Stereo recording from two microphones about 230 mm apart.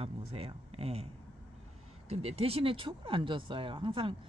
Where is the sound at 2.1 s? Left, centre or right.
Right.